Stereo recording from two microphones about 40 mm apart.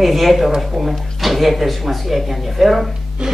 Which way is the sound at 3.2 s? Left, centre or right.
Right.